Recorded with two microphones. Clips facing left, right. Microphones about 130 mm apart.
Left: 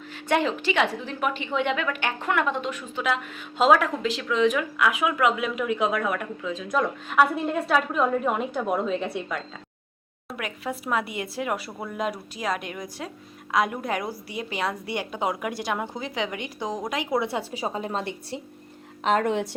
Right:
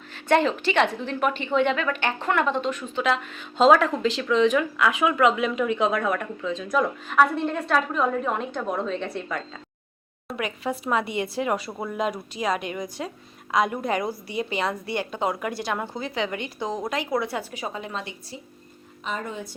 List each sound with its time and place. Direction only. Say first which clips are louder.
0.1 s a woman's voice: right 3 dB; 10° left (ahead or behind); by 18.0 s 40° left (ahead or behind)
19.0 s a woman's voice: left 9 dB; 80° left